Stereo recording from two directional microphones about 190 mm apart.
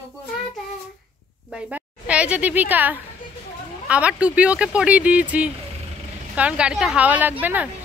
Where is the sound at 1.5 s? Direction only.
5° right (ahead or behind).